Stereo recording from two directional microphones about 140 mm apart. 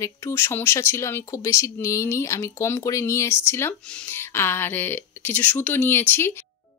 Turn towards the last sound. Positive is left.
turn(degrees=15)  # may be behind; listen again after turning